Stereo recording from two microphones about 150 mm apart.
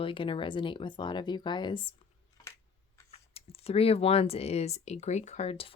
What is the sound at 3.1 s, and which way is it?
Speech, 40° left (ahead or behind).